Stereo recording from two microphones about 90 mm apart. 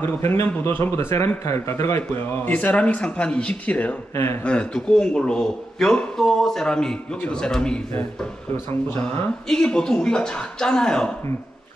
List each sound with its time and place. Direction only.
0.0 s a man's voice: 25° left (ahead or behind)
4.1 s a man's voice: 30° left (ahead or behind)
4.4 s speech: 15° left (ahead or behind)
9.5 s speech: 10° left (ahead or behind)